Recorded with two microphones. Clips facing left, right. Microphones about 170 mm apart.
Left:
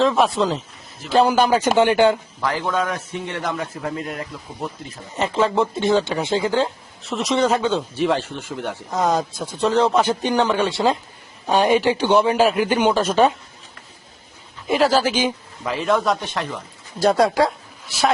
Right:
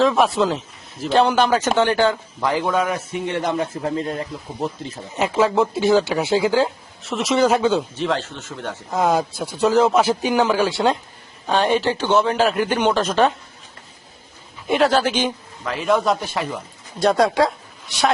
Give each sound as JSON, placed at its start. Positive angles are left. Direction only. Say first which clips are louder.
{"t": 0.0, "sound": "speech", "louder": "right 1 dB", "side_deg": 0}
{"t": 2.4, "sound": "a man's voice", "louder": "right 5 dB", "side_deg": -15}
{"t": 3.2, "sound": "speech", "louder": "right 5 dB", "side_deg": -20}
{"t": 5.1, "sound": "speech", "louder": "right 1 dB", "side_deg": -5}
{"t": 7.9, "sound": "speech", "louder": "left 2 dB", "side_deg": 10}
{"t": 8.9, "sound": "speech", "louder": "right 2 dB", "side_deg": -5}
{"t": 11.4, "sound": "speech", "louder": "left 2 dB", "side_deg": 15}
{"t": 14.7, "sound": "a man's voice", "louder": "even", "side_deg": 0}